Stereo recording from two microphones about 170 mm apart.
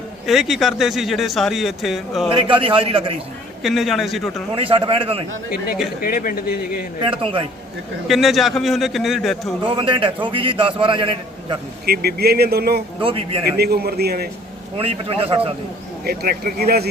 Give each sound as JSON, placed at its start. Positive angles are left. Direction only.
{"t": 0.3, "sound": "speech", "side_deg": 0}
{"t": 2.3, "sound": "a man's voice", "side_deg": -30}
{"t": 3.6, "sound": "speech", "side_deg": 0}
{"t": 4.5, "sound": "a man's voice", "side_deg": -35}
{"t": 6.0, "sound": "speech", "side_deg": 55}
{"t": 7.0, "sound": "a man's voice", "side_deg": -30}
{"t": 8.0, "sound": "speech", "side_deg": 0}
{"t": 9.6, "sound": "a man's voice", "side_deg": -30}
{"t": 11.9, "sound": "speech", "side_deg": -65}
{"t": 13.0, "sound": "a man's voice", "side_deg": -30}
{"t": 13.6, "sound": "speech", "side_deg": -65}
{"t": 14.8, "sound": "a man's voice", "side_deg": -35}
{"t": 16.0, "sound": "speech", "side_deg": -60}